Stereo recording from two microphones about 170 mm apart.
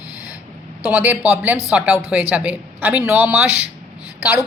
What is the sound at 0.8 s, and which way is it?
A woman's voice, 10° right (ahead or behind).